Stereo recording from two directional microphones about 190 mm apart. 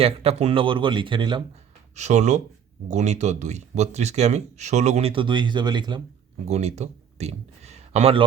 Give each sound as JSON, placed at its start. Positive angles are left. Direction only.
{"t": 0.0, "sound": "speech", "side_deg": -30}
{"t": 2.0, "sound": "speech", "side_deg": -35}
{"t": 6.4, "sound": "speech", "side_deg": -35}